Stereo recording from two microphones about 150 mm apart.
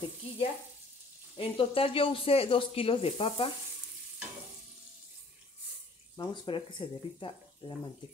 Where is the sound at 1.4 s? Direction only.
40° left (ahead or behind).